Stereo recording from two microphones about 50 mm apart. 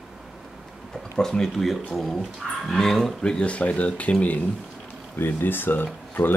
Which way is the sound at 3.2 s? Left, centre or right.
Centre.